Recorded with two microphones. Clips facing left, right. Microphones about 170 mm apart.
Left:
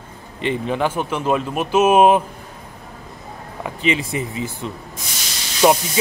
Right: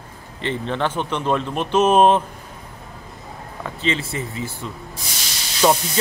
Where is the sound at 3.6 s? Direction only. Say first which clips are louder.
Left 3 dB; 15° left (ahead or behind).